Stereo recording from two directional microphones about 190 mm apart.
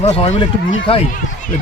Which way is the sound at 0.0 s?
35° left (ahead or behind).